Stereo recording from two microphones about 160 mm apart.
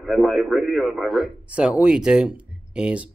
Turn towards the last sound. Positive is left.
turn(degrees=-5)  # may be behind; listen again after turning